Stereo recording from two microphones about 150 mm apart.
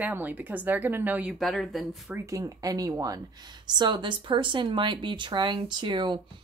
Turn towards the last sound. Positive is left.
turn(degrees=-30)  # may be behind; listen again after turning